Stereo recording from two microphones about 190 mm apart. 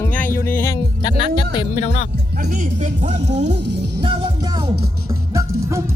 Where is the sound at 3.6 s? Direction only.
65° right (ahead or behind).